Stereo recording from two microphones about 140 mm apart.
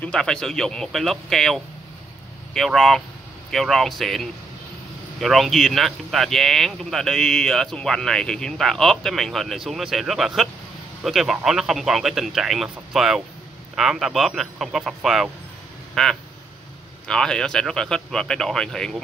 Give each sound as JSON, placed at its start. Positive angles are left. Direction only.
{"t": 0.0, "sound": "speech", "side_deg": 5}